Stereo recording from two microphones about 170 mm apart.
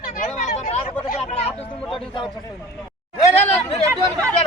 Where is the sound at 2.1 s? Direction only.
30° left (ahead or behind).